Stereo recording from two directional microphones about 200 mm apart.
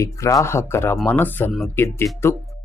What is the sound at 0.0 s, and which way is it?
Speech, 15° left (ahead or behind).